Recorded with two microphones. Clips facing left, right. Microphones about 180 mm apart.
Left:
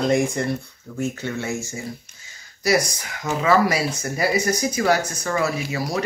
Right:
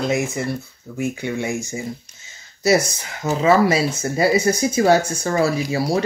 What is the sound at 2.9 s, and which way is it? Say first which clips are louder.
Speech: right 3 dB; 25° right (ahead or behind).